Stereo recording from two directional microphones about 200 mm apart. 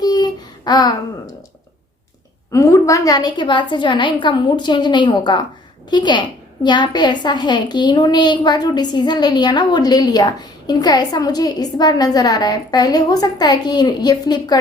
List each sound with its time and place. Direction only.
0.0 s child singing: 20° left (ahead or behind)
2.5 s a woman's voice: 15° left (ahead or behind)